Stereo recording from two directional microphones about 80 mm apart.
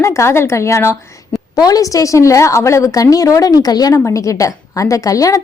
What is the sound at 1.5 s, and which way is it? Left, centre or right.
A woman's voice, left.